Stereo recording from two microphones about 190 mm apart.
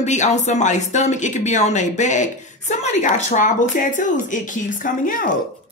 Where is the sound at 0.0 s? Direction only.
40° left (ahead or behind).